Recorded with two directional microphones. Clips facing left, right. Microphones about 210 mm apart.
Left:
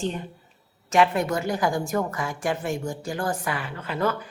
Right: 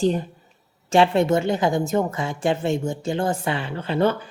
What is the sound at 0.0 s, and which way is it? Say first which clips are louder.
A woman's voice: right 8 dB; 35° right (ahead or behind).